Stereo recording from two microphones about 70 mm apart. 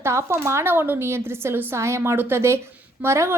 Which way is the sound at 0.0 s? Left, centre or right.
Right.